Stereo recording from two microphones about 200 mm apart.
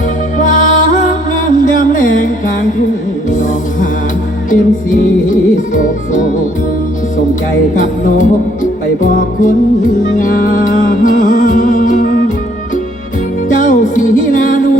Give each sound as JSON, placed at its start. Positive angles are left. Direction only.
{"t": 0.3, "sound": "music", "side_deg": 40}
{"t": 5.3, "sound": "music", "side_deg": 40}
{"t": 7.8, "sound": "music", "side_deg": 40}
{"t": 13.5, "sound": "music", "side_deg": 40}